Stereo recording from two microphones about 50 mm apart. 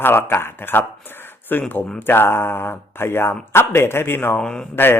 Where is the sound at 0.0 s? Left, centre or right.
Left.